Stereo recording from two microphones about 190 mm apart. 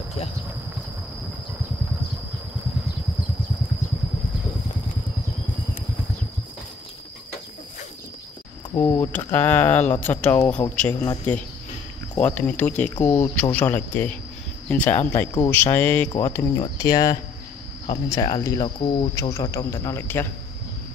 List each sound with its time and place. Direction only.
8.7 s speech: 15° left (ahead or behind)
16.1 s speech: 25° left (ahead or behind)